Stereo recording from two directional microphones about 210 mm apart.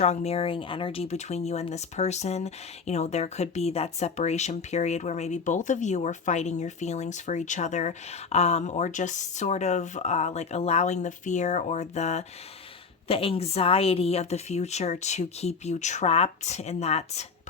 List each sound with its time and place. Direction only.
0.0 s speech: 30° left (ahead or behind)